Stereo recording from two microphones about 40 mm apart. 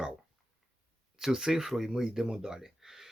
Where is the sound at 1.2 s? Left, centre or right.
Centre.